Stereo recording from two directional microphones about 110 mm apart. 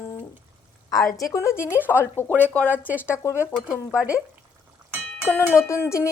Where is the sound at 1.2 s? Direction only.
30° left (ahead or behind).